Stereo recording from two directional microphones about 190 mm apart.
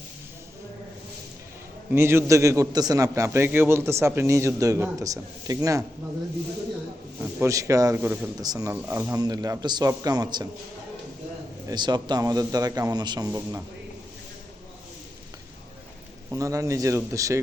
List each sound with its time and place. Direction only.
1.9 s a man's voice: 10° right (ahead or behind)
7.2 s a man's voice: 10° right (ahead or behind)
11.7 s a man's voice: 20° right (ahead or behind)
16.3 s a man's voice: 15° right (ahead or behind)